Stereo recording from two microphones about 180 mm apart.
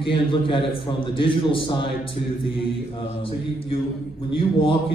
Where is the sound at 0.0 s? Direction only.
30° left (ahead or behind).